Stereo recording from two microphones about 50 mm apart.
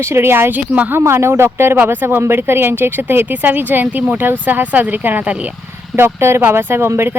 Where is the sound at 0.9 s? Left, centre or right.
Right.